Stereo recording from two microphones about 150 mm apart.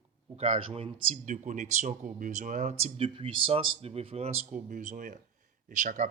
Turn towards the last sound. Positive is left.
turn(degrees=-60)  # may be behind; listen again after turning